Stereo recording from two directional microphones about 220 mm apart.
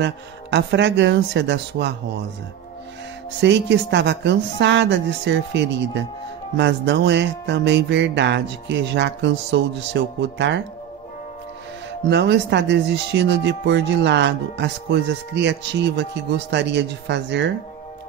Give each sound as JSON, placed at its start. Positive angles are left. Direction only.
{"t": 0.0, "sound": "speech", "side_deg": -50}
{"t": 3.3, "sound": "speech", "side_deg": -55}
{"t": 12.1, "sound": "speech", "side_deg": -50}